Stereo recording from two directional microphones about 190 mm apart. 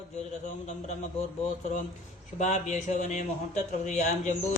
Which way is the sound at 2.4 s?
40° left (ahead or behind).